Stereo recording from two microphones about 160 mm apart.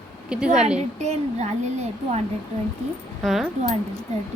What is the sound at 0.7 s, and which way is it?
Speech, 45° right (ahead or behind).